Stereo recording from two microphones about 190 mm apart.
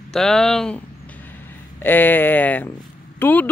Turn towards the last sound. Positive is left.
turn(degrees=10)  # may be behind; listen again after turning